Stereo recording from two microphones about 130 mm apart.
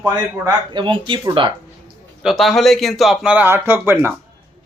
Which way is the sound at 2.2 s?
Centre (ahead or behind).